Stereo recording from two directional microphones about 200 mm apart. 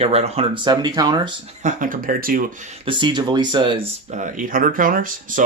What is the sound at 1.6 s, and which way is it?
Speech, 40° right (ahead or behind).